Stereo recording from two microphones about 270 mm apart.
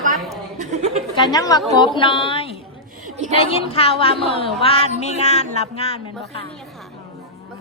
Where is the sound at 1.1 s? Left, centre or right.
Centre.